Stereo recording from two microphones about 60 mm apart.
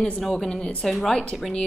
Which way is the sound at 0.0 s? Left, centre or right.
Centre.